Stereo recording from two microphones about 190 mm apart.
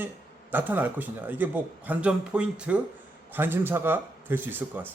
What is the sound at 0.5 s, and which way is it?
A man's voice, 10° right (ahead or behind).